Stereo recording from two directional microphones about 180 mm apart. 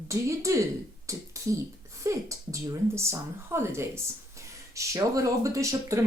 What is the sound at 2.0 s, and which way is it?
Speech, 15° right (ahead or behind).